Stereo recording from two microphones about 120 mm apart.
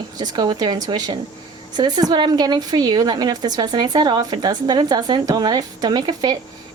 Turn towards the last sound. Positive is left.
turn(degrees=-35)  # may be behind; listen again after turning